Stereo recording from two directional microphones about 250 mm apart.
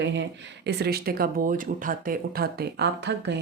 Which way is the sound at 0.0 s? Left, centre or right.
Right.